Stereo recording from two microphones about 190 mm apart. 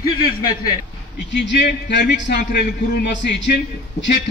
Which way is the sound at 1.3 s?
65° left (ahead or behind).